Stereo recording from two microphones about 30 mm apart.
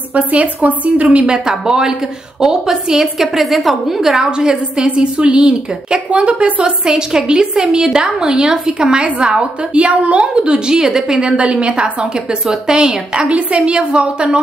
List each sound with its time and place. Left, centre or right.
0.1 s a woman's voice: right
1.2 s a woman's voice: right
3.2 s a woman's voice: centre
4.0 s a woman's voice: centre
4.3 s a woman's voice: right
6.0 s a woman's voice: right
6.8 s a woman's voice: right
9.8 s a woman's voice: right
11.1 s a woman's voice: right
12.0 s a woman's voice: right
13.3 s a woman's voice: right